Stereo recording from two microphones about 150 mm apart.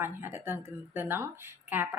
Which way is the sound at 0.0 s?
15° right (ahead or behind).